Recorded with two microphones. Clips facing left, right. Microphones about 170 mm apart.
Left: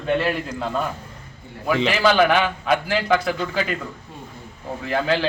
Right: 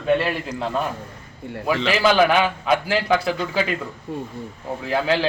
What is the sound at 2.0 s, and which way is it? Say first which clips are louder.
A man's voice: right 1 dB; 5° right (ahead or behind).